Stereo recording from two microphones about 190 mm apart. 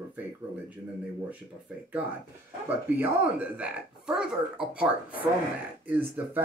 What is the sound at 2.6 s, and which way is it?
Speech, 10° right (ahead or behind).